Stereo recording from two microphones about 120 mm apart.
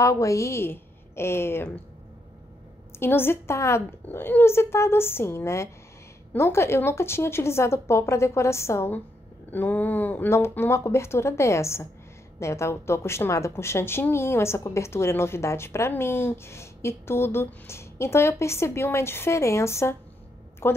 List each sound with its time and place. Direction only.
0.0 s a woman's voice: 25° left (ahead or behind)
3.0 s a woman's voice: 20° left (ahead or behind)